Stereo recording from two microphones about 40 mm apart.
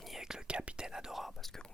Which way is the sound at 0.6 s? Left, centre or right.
Right.